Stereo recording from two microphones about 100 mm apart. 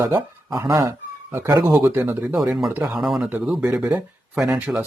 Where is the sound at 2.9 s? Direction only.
Centre (ahead or behind).